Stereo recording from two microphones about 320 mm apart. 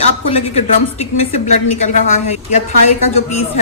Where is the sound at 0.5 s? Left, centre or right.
Left.